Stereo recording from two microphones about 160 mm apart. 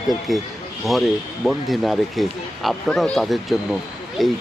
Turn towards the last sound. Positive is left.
turn(degrees=0)  # may be behind; listen again after turning